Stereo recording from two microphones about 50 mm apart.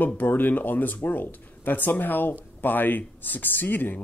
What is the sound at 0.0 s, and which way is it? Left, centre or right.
Speech, left.